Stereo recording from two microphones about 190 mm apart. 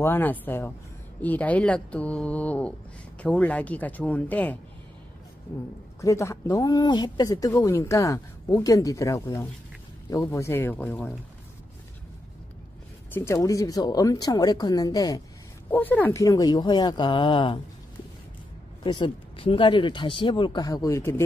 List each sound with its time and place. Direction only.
0.0 s a woman's voice: 10° left (ahead or behind)
5.9 s a woman's voice: 15° left (ahead or behind)
13.1 s speech: 15° left (ahead or behind)
18.9 s speech: 25° left (ahead or behind)